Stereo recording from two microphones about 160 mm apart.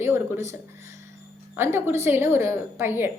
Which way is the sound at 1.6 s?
15° right (ahead or behind).